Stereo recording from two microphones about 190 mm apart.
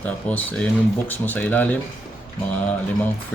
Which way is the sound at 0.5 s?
10° left (ahead or behind).